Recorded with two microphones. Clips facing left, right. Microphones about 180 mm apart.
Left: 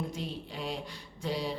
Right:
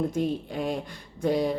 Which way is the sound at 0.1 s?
50° right (ahead or behind).